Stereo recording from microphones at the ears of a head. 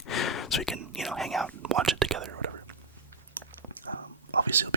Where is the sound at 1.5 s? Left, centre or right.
Right.